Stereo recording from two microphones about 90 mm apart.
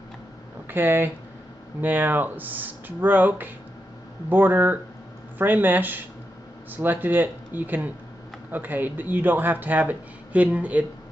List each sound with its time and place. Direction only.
0.7 s speech: 20° right (ahead or behind)